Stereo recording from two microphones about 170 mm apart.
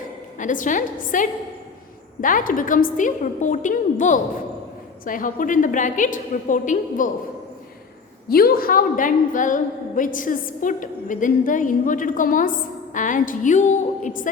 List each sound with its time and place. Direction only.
0.3 s a woman's voice: 50° left (ahead or behind)
8.3 s a woman's voice: 65° left (ahead or behind)